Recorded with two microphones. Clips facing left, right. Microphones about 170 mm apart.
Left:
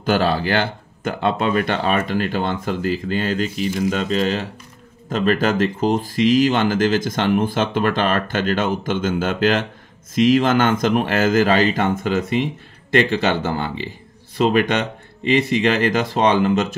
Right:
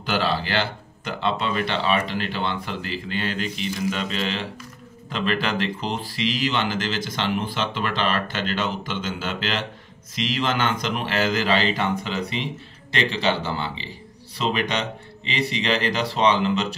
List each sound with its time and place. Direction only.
0.0 s speech: 45° left (ahead or behind)